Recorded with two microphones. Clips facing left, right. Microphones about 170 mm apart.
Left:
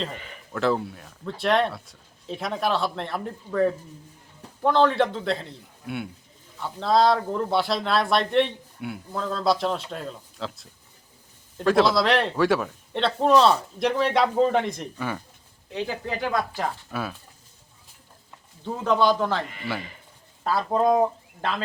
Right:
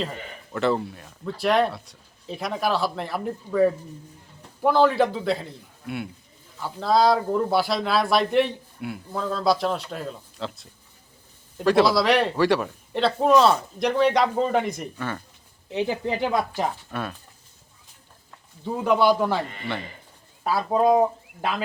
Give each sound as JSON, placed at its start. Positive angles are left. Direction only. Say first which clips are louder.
{"t": 0.5, "sound": "speech", "louder": "right 1 dB", "side_deg": 0}
{"t": 14.9, "sound": "speech", "louder": "left 1 dB", "side_deg": 10}
{"t": 15.7, "sound": "speech", "louder": "right 4 dB", "side_deg": -20}
{"t": 16.9, "sound": "speech", "louder": "even", "side_deg": 5}
{"t": 18.6, "sound": "speech", "louder": "right 2 dB", "side_deg": -10}